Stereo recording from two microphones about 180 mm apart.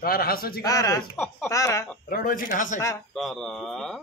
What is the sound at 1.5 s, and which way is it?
Speech, 20° left (ahead or behind).